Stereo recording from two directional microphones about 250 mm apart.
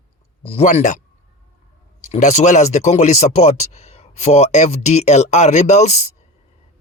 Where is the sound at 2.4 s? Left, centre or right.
Left.